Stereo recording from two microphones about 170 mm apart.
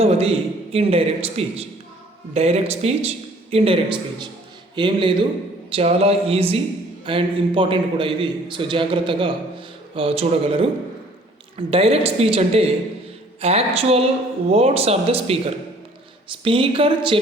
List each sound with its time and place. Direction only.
0.0 s a man's voice: 35° right (ahead or behind)